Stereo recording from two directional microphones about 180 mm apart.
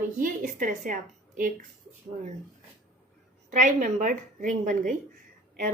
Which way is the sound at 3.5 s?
45° right (ahead or behind).